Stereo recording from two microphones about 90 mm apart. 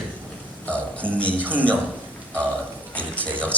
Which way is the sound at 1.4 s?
20° right (ahead or behind).